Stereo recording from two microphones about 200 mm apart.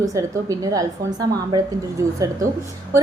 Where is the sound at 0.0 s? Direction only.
15° right (ahead or behind).